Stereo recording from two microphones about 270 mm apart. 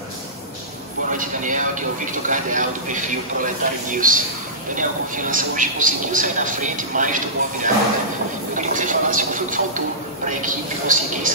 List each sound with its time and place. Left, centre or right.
1.1 s a man's voice: right